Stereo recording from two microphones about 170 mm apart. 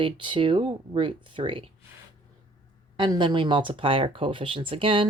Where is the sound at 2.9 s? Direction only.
25° right (ahead or behind).